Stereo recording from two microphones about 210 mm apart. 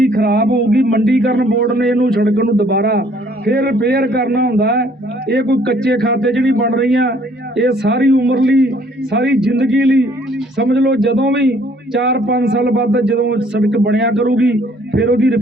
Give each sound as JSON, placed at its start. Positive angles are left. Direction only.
{"t": 0.1, "sound": "speech", "side_deg": -50}
{"t": 10.6, "sound": "speech", "side_deg": -55}